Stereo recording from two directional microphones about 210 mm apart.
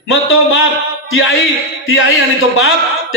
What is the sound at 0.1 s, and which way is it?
Speech, 70° left (ahead or behind).